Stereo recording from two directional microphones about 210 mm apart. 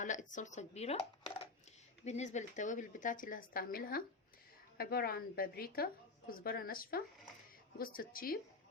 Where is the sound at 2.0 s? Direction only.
35° left (ahead or behind).